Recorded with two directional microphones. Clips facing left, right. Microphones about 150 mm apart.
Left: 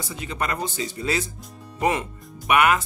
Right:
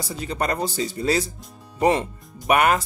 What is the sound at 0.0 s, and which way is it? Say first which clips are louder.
Speech: right 3 dB; 35° right (ahead or behind).